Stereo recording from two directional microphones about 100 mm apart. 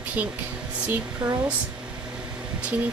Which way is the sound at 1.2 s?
50° right (ahead or behind).